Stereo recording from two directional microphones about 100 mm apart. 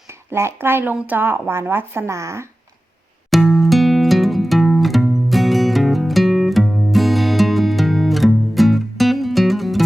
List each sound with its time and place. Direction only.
0.3 s a woman's voice: 25° right (ahead or behind)
3.2 s music: centre (ahead or behind)